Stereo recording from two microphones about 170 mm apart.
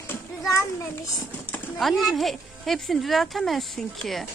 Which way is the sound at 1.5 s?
5° left (ahead or behind).